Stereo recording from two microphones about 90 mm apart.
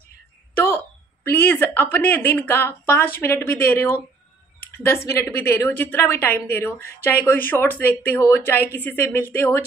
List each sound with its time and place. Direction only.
0.6 s a woman's voice: 20° left (ahead or behind)